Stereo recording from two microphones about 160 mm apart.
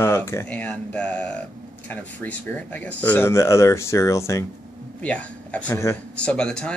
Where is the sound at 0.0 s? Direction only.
15° left (ahead or behind).